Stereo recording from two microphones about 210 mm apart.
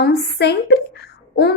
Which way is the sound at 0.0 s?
50° left (ahead or behind).